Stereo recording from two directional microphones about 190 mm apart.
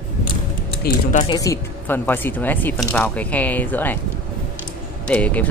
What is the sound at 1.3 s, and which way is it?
Speech, 15° left (ahead or behind).